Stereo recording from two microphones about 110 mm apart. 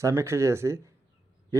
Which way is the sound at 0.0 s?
25° right (ahead or behind).